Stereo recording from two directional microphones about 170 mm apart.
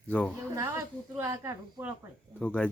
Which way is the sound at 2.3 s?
5° left (ahead or behind).